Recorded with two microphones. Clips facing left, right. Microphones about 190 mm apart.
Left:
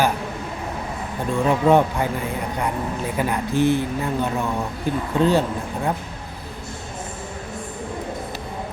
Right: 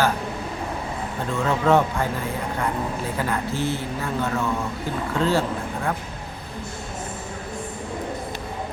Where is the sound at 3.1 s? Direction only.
15° left (ahead or behind).